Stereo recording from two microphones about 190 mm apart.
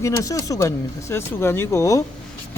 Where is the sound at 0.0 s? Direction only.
15° left (ahead or behind).